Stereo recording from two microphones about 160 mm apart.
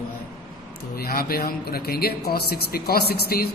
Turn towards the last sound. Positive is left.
turn(degrees=75)  # may be behind; listen again after turning